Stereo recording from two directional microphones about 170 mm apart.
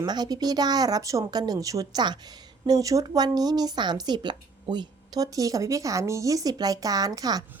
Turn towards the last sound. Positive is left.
turn(degrees=-20)  # may be behind; listen again after turning